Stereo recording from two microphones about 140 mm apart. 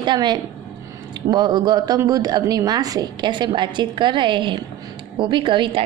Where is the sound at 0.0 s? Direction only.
30° right (ahead or behind).